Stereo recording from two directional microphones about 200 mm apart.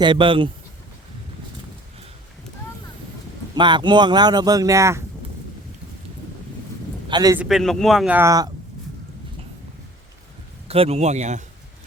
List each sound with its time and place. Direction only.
0.0 s speech: 25° right (ahead or behind)
3.5 s speech: 25° right (ahead or behind)
7.1 s a man's voice: 20° right (ahead or behind)
7.3 s speech: centre (ahead or behind)
10.7 s speech: 30° right (ahead or behind)